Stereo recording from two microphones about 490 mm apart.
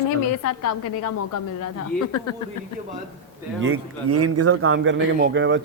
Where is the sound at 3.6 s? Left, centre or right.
Right.